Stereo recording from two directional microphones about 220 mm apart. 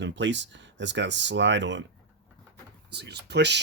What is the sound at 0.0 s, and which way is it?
Speech, 55° right (ahead or behind).